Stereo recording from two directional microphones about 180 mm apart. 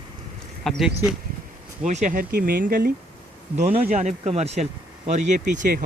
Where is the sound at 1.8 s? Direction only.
40° right (ahead or behind).